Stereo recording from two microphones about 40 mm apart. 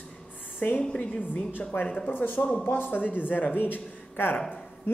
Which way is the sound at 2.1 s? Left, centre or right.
Left.